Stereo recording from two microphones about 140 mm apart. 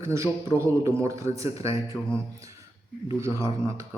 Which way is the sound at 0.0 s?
20° right (ahead or behind).